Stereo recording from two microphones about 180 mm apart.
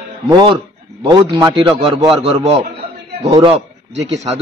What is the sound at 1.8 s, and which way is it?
A man's voice, 30° right (ahead or behind).